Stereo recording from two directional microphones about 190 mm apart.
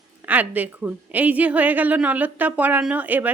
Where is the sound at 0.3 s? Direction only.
10° right (ahead or behind).